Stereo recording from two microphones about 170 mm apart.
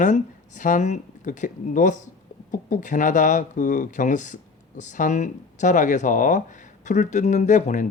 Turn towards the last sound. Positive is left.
turn(degrees=45)  # may be behind; listen again after turning